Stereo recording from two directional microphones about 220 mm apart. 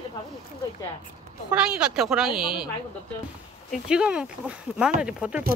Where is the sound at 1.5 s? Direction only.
5° right (ahead or behind).